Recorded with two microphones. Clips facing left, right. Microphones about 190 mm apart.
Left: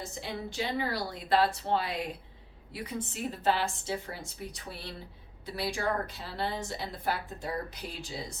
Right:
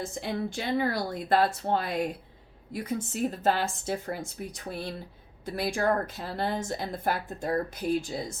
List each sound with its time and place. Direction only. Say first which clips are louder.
0.0 s a woman's voice: right 6 dB; 50° right (ahead or behind)